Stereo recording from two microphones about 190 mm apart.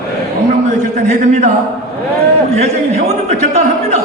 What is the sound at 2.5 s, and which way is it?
A man's voice, 35° right (ahead or behind).